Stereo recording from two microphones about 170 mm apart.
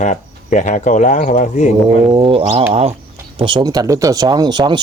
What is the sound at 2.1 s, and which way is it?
Speech, 30° right (ahead or behind).